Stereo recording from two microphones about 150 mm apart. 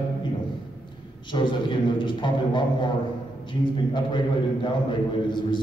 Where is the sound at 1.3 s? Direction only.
30° left (ahead or behind).